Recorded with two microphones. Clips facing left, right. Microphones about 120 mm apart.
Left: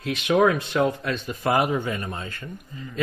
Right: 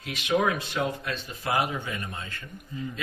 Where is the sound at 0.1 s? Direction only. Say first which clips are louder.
Left 6 dB; 80° left.